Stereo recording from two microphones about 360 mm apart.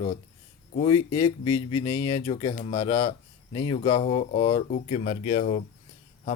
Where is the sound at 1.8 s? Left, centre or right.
Centre.